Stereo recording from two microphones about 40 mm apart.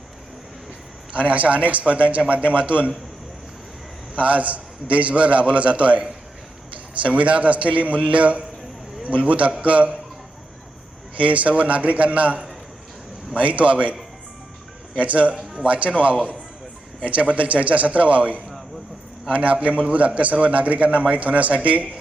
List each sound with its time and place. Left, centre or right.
1.1 s a man's voice: right
4.1 s a man's voice: right
7.0 s a man's voice: right
11.2 s a man's voice: right
14.9 s a man's voice: right